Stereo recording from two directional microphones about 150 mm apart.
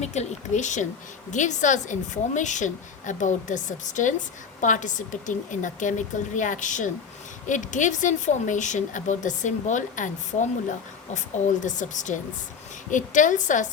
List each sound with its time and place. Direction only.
0.0 s a woman's voice: 50° left (ahead or behind)